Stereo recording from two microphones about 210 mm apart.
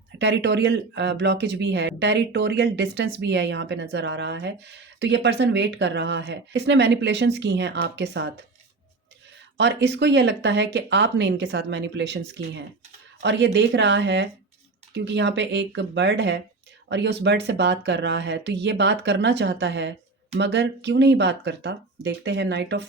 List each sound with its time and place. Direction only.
0.2 s speech: 55° right (ahead or behind)
9.6 s speech: 55° right (ahead or behind)